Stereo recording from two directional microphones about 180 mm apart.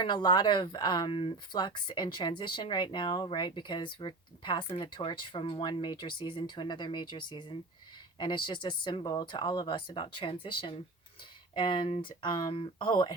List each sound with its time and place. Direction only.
0.0 s speech: 25° left (ahead or behind)